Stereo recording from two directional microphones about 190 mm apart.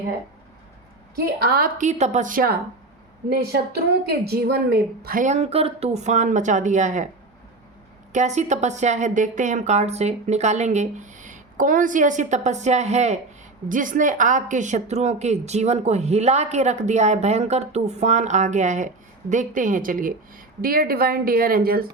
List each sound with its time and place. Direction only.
1.1 s a woman's voice: 55° right (ahead or behind)
8.1 s a woman's voice: 40° right (ahead or behind)